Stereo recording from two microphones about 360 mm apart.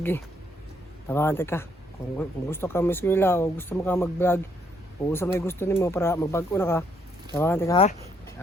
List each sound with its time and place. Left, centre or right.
1.0 s speech: centre